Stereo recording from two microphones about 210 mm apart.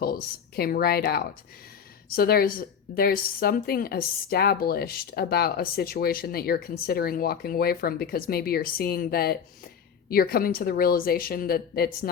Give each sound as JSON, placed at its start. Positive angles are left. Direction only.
{"t": 0.0, "sound": "a woman's voice", "side_deg": 45}